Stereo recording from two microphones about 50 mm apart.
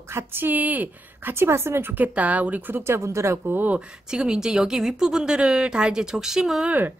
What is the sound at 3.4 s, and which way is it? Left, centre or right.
Speech, right.